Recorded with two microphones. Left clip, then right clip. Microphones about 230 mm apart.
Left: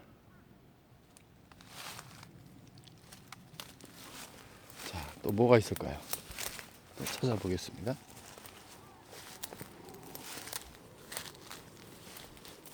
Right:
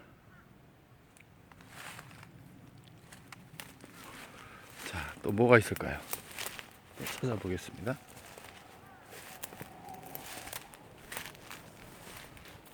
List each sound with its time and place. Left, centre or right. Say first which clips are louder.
1.7 s a sound: left 1 dB; centre
4.8 s walk: right 2 dB; centre
7.2 s speech: left 2 dB; centre
9.1 s walk: even; centre
10.1 s a sound: left 3 dB; centre
11.1 s walk: right 1 dB; centre